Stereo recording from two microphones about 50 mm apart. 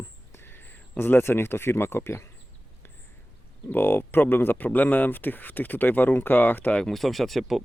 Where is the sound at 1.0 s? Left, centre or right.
Left.